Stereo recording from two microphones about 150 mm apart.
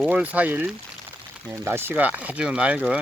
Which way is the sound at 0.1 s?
10° right (ahead or behind).